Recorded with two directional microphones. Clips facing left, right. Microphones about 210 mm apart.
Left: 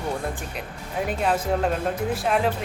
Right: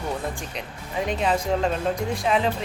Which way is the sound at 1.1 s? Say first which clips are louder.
Even; 5° left (ahead or behind).